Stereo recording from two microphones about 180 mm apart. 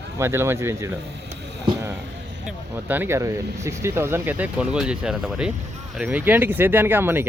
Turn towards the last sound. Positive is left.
turn(degrees=-10)  # may be behind; listen again after turning